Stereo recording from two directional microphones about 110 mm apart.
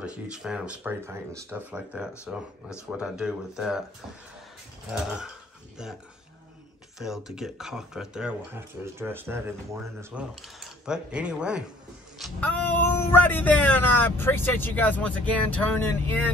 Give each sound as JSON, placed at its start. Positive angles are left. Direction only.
{"t": 0.0, "sound": "speech", "side_deg": -10}
{"t": 1.0, "sound": "speech", "side_deg": -25}
{"t": 1.7, "sound": "speech", "side_deg": -15}
{"t": 4.9, "sound": "speech", "side_deg": -5}
{"t": 7.0, "sound": "speech", "side_deg": -5}
{"t": 8.5, "sound": "speech", "side_deg": -20}
{"t": 10.1, "sound": "speech", "side_deg": -10}
{"t": 12.4, "sound": "speech", "side_deg": 15}